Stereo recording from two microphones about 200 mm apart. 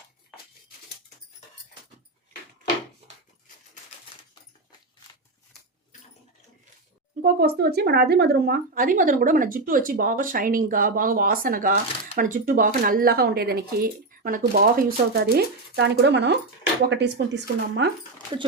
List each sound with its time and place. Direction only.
7.2 s speech: 50° right (ahead or behind)